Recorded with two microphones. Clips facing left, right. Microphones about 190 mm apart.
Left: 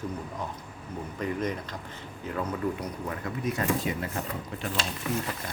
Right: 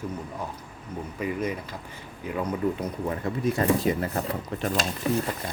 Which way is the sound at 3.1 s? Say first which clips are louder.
Right 5 dB; 30° right (ahead or behind).